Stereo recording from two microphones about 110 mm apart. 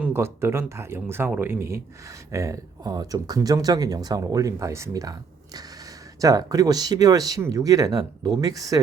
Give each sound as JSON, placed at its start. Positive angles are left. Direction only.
{"t": 0.0, "sound": "speech", "side_deg": -20}
{"t": 6.1, "sound": "speech", "side_deg": -35}